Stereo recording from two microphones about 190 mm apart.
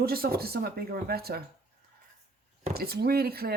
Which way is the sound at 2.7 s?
55° right (ahead or behind).